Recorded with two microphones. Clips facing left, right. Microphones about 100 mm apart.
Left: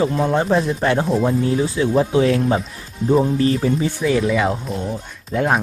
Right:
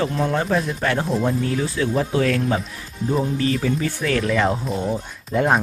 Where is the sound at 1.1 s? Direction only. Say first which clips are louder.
Left 3 dB; 5° left (ahead or behind).